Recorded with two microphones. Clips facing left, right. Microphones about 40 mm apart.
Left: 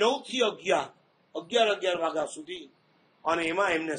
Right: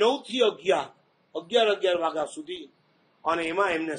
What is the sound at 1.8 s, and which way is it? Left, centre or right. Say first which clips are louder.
Speech: right 3 dB; right.